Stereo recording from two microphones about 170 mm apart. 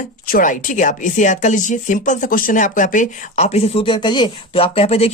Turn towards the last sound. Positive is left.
turn(degrees=35)  # may be behind; listen again after turning